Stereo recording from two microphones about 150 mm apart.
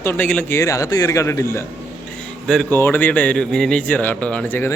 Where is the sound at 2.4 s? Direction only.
5° left (ahead or behind).